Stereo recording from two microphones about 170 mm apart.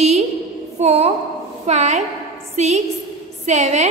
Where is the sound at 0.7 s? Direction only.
40° right (ahead or behind).